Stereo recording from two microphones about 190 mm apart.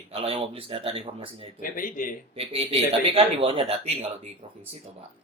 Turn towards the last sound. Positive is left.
turn(degrees=-30)  # may be behind; listen again after turning